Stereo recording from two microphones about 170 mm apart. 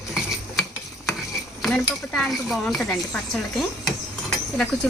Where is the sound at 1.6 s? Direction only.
Centre (ahead or behind).